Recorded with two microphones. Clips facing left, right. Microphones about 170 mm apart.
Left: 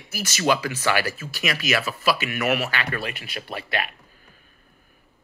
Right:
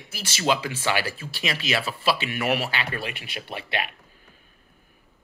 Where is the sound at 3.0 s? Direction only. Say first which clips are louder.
Left 2 dB; 40° left (ahead or behind).